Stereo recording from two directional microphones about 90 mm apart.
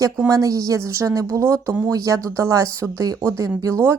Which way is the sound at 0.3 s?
40° right (ahead or behind).